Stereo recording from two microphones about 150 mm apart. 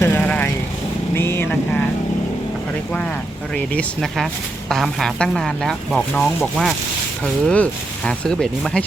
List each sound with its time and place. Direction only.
0.0 s vehicle: 15° left (ahead or behind)
3.5 s speech: 5° left (ahead or behind)